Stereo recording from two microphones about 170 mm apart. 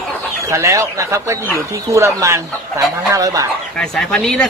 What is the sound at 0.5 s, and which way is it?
Speech, 15° right (ahead or behind).